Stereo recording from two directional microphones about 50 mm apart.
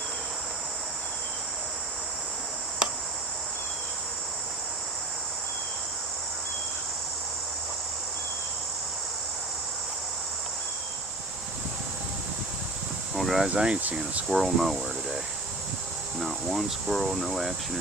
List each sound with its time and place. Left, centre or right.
13.1 s a sound: centre
13.5 s speech: right
14.3 s speech: centre
16.2 s speech: centre